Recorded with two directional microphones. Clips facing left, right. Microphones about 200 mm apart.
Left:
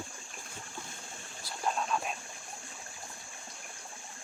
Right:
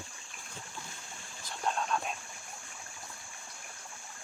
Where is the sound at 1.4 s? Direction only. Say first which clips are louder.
Even; 5° left (ahead or behind).